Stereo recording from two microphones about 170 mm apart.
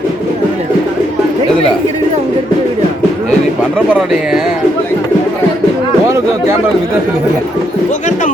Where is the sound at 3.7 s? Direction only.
5° right (ahead or behind).